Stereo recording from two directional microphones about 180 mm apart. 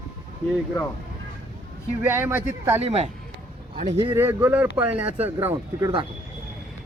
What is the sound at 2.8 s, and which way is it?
Speech, 35° right (ahead or behind).